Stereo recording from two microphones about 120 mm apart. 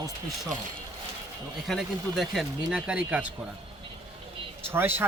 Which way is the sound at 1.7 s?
Centre (ahead or behind).